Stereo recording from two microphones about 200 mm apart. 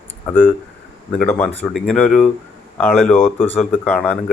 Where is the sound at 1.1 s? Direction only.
5° left (ahead or behind).